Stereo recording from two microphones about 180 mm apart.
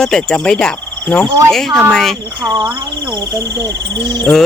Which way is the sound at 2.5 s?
20° right (ahead or behind).